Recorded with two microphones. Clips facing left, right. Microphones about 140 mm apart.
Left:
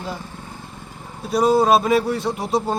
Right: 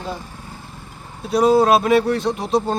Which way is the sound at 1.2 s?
Centre (ahead or behind).